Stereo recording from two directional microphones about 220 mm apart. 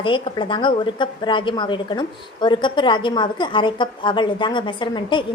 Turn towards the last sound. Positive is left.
turn(degrees=20)  # may be behind; listen again after turning